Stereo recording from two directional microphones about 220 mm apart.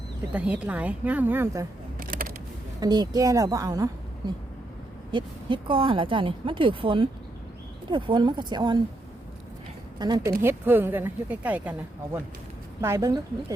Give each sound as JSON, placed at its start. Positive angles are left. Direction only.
{"t": 0.3, "sound": "speech", "side_deg": -5}
{"t": 2.0, "sound": "a sound", "side_deg": -40}
{"t": 2.8, "sound": "speech", "side_deg": -20}
{"t": 5.1, "sound": "speech", "side_deg": -25}
{"t": 10.0, "sound": "speech", "side_deg": -20}
{"t": 12.8, "sound": "speech", "side_deg": -15}